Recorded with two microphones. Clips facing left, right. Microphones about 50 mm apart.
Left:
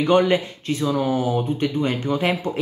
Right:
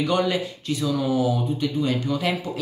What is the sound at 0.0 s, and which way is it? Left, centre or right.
Speech, left.